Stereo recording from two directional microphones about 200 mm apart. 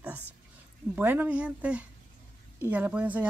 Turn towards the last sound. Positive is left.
turn(degrees=-5)  # may be behind; listen again after turning